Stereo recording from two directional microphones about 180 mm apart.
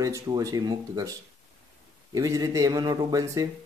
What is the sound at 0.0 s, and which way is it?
Speech, 20° right (ahead or behind).